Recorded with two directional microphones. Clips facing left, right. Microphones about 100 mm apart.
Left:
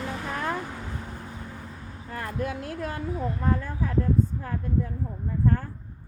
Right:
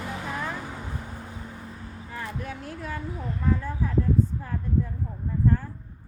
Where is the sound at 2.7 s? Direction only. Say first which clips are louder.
Left 2 dB; 60° left (ahead or behind).